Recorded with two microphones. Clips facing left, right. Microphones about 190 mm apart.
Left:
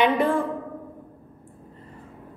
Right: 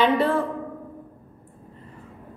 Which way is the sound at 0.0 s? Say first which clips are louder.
Even; 15° left (ahead or behind).